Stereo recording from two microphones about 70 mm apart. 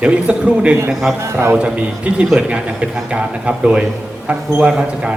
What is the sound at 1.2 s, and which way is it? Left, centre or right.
Speech, right.